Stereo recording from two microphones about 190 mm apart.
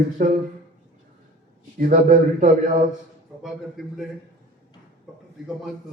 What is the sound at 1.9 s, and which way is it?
Speech, 45° right (ahead or behind).